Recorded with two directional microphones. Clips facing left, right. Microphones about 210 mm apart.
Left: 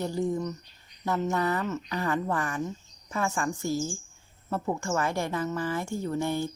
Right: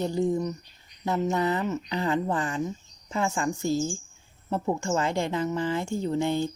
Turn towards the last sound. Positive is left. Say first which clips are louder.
# right 3 dB
turn(degrees=-20)  # may be behind; listen again after turning